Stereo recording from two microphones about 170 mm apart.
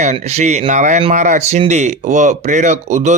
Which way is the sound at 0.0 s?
45° right (ahead or behind).